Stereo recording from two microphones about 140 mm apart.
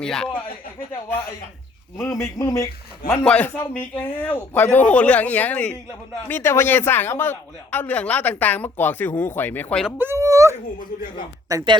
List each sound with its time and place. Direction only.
0.0 s speech: 5° left (ahead or behind)
2.0 s a man's voice: 20° left (ahead or behind)
10.0 s speech: 20° right (ahead or behind)